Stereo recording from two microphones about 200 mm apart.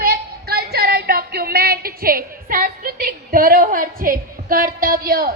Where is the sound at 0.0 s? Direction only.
50° right (ahead or behind).